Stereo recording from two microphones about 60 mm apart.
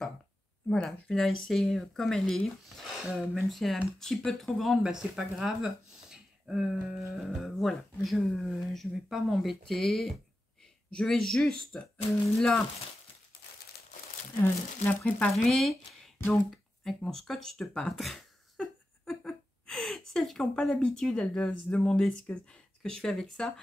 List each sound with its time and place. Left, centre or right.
0.8 s speech: centre
7.4 s speech: centre
11.7 s speech: centre
14.3 s speech: left
15.4 s a sound: centre
19.6 s speech: centre